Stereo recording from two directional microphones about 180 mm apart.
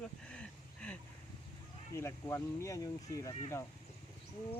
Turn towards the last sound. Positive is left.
turn(degrees=15)  # may be behind; listen again after turning